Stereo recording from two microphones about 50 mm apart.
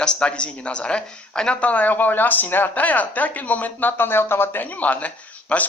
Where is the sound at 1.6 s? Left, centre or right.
Left.